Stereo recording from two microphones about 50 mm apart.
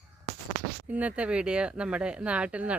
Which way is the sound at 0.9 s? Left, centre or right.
Right.